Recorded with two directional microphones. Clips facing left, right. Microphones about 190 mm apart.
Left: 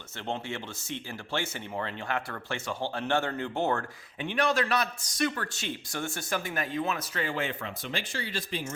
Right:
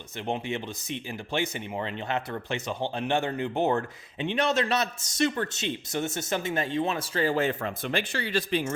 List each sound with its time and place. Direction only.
0.2 s speech: 15° right (ahead or behind); by 7.7 s 40° right (ahead or behind)
7.9 s speech: 60° right (ahead or behind)